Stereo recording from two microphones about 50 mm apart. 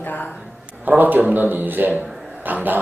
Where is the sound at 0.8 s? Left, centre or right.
Right.